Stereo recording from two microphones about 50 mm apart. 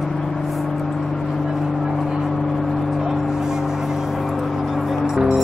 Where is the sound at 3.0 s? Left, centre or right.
Centre.